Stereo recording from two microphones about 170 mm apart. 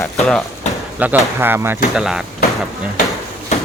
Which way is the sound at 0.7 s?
40° left (ahead or behind).